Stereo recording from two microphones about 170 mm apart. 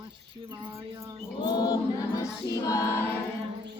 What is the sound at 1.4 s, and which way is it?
Choir, 25° left (ahead or behind).